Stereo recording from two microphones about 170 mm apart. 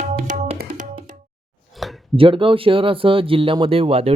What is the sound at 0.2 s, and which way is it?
Tabla, 50° right (ahead or behind).